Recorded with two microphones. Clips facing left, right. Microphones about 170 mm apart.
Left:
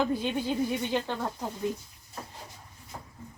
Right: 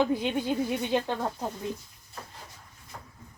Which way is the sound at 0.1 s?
20° right (ahead or behind).